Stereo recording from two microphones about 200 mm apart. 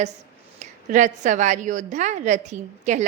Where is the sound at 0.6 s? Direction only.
40° right (ahead or behind).